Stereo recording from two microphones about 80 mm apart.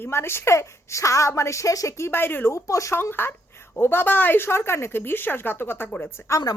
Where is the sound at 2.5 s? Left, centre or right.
Left.